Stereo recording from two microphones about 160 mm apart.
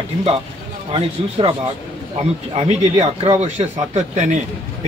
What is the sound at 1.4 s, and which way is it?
A man's voice, 30° right (ahead or behind).